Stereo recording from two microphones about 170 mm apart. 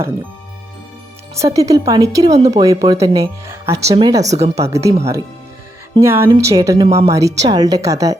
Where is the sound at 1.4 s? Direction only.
20° right (ahead or behind).